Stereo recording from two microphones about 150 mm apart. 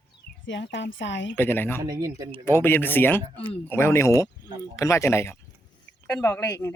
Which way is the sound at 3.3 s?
40° left (ahead or behind).